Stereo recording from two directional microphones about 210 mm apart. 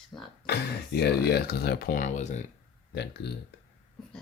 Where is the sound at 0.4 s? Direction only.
50° left (ahead or behind); by 2.4 s 35° left (ahead or behind).